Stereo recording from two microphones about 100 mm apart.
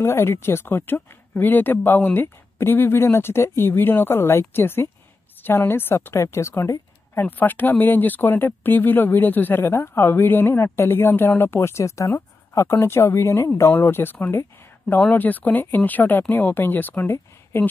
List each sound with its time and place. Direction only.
0.0 s a woman's voice: 25° left (ahead or behind)